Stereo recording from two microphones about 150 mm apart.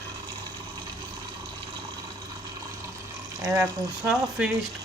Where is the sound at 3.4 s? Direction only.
20° right (ahead or behind).